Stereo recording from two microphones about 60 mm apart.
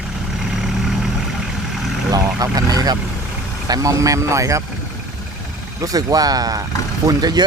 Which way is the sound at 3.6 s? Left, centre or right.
Right.